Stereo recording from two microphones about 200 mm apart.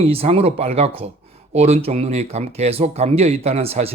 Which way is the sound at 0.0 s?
30° right (ahead or behind).